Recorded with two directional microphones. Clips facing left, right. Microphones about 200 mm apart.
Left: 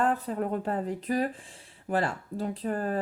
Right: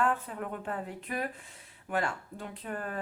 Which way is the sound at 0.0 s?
35° left (ahead or behind).